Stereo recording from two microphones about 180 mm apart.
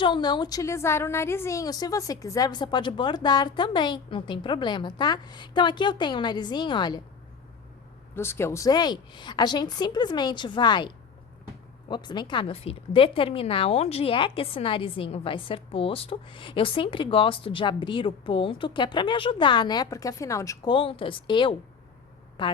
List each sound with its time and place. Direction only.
0.0 s speech: 25° left (ahead or behind)
8.1 s speech: 15° left (ahead or behind)
20.7 s speech: 30° left (ahead or behind)